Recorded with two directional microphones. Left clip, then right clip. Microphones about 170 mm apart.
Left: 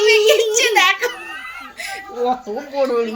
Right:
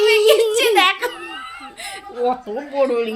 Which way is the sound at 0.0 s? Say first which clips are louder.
Even; 10° right (ahead or behind).